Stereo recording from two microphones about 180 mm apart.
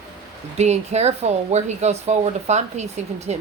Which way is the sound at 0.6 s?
35° right (ahead or behind).